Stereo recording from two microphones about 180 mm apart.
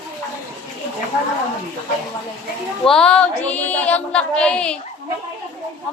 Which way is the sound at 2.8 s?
5° left (ahead or behind).